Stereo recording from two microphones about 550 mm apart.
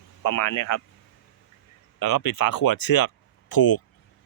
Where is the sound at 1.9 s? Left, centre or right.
Left.